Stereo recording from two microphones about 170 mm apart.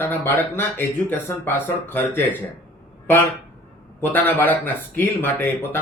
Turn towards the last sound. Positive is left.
turn(degrees=10)  # may be behind; listen again after turning